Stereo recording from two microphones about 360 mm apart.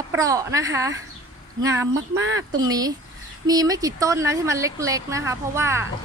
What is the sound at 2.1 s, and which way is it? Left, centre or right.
Speech, right.